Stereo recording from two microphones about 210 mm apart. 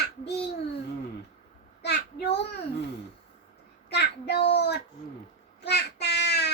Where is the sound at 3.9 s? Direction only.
50° left (ahead or behind).